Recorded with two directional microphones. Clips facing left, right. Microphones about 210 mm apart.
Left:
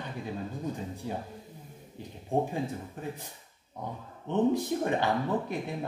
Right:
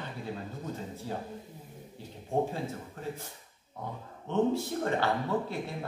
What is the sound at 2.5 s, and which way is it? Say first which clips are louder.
Speech: left 3 dB; 15° left (ahead or behind).